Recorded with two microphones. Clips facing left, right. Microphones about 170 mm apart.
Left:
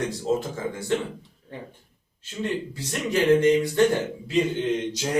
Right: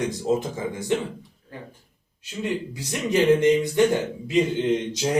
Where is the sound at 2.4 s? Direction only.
15° right (ahead or behind).